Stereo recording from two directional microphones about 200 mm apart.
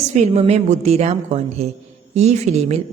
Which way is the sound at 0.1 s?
35° right (ahead or behind).